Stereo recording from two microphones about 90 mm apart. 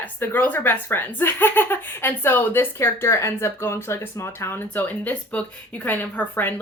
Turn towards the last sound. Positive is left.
turn(degrees=20)  # may be behind; listen again after turning